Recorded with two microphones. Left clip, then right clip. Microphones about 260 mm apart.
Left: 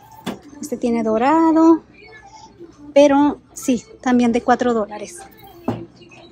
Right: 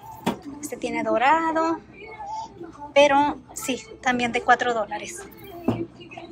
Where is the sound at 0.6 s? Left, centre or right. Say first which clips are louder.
Left 7 dB; centre.